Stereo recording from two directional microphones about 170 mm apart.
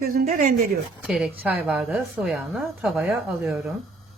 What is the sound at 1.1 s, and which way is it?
A woman's voice, 5° right (ahead or behind).